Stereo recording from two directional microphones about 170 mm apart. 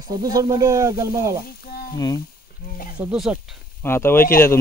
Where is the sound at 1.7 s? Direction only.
60° left (ahead or behind).